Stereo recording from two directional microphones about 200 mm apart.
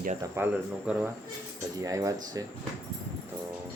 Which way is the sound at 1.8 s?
15° right (ahead or behind).